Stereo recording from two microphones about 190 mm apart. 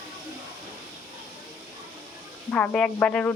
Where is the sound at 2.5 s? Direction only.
5° left (ahead or behind).